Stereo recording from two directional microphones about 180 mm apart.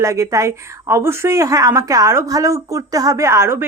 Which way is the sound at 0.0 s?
15° right (ahead or behind).